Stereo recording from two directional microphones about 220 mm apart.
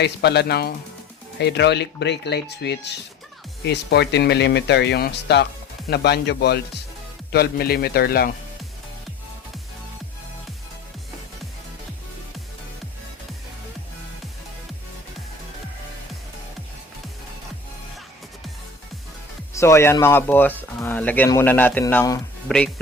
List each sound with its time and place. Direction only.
0.0 s speech: 50° left (ahead or behind)
19.5 s speech: 15° left (ahead or behind)